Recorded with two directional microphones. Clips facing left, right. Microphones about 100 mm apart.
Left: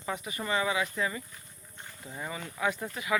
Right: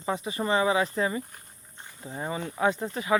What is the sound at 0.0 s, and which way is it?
Speech, 30° right (ahead or behind).